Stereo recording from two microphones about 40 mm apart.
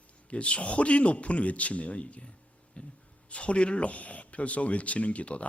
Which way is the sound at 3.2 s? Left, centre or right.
Left.